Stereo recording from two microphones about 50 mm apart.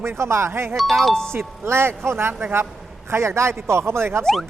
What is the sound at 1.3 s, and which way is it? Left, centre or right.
Speech, right.